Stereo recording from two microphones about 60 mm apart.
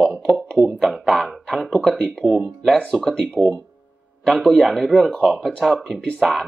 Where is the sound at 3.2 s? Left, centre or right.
Centre.